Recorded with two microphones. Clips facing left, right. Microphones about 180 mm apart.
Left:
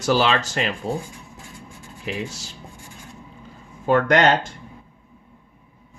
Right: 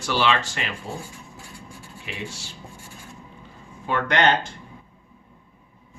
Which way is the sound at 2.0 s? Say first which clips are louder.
Left 6 dB; 40° left (ahead or behind).